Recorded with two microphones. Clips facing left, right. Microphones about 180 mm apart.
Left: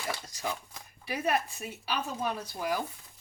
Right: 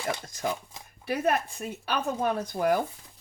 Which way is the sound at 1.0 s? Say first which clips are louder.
Right 4 dB; 55° right (ahead or behind).